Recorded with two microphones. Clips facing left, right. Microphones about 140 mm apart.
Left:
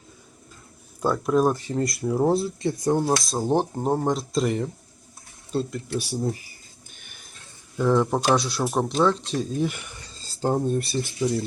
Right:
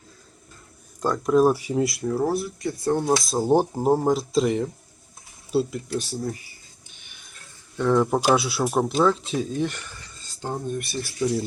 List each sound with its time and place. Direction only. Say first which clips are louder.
1.0 s speech: right 2 dB; 5° left (ahead or behind)
2.2 s speech: left 6 dB; 25° left (ahead or behind)
3.0 s speech: right 1 dB; centre (ahead or behind)
6.0 s speech: left 2 dB; 10° left (ahead or behind)
7.0 s a sound: left 1 dB; 45° left (ahead or behind)
7.8 s speech: right 1 dB; centre (ahead or behind)
9.9 s a sound: left 1 dB; 25° left (ahead or behind)
11.2 s speech: right 1 dB; centre (ahead or behind)